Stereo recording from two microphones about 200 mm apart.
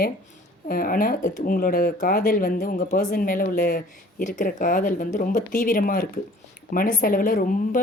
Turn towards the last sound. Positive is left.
turn(degrees=45)  # may be behind; listen again after turning